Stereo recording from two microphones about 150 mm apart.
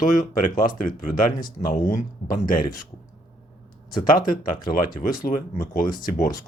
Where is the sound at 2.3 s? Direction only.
70° left (ahead or behind).